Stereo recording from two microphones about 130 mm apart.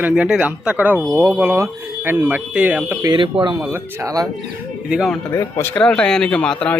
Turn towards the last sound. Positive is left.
turn(degrees=10)  # may be behind; listen again after turning